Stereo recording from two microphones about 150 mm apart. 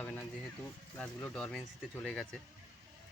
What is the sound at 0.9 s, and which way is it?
Speech, 10° left (ahead or behind).